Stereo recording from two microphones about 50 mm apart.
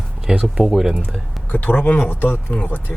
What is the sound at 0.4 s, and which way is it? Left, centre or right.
Speech, centre.